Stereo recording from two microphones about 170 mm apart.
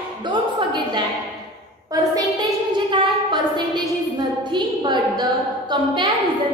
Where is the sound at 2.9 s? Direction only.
30° right (ahead or behind).